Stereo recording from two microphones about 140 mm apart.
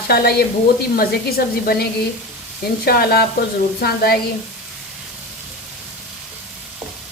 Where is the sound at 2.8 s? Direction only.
90° left.